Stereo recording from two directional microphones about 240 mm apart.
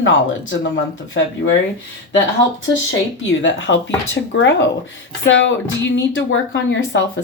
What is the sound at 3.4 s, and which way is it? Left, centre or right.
Speech, left.